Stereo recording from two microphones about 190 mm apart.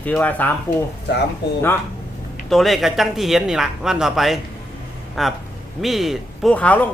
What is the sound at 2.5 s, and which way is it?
A man's voice, centre (ahead or behind).